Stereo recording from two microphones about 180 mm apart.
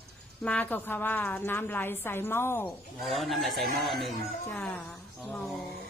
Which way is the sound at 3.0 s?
Centre (ahead or behind).